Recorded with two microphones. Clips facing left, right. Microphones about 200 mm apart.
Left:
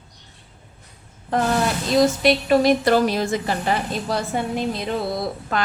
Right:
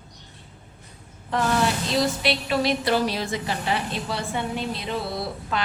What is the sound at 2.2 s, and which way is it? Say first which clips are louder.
A woman's voice: left 7 dB; 45° left (ahead or behind).